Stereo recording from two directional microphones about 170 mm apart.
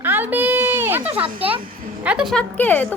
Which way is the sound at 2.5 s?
10° left (ahead or behind).